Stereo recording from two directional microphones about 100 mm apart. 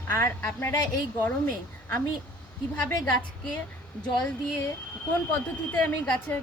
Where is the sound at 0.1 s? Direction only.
25° left (ahead or behind).